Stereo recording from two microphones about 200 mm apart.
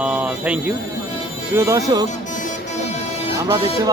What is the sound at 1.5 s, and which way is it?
Speech, 15° right (ahead or behind).